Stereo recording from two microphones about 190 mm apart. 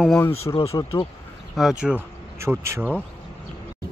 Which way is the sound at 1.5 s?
5° right (ahead or behind).